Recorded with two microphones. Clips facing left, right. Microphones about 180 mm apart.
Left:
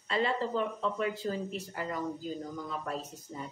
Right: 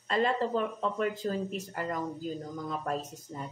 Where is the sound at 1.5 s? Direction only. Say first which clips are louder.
Right 2 dB; 45° right (ahead or behind).